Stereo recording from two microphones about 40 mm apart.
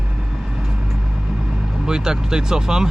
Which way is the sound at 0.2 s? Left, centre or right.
Centre.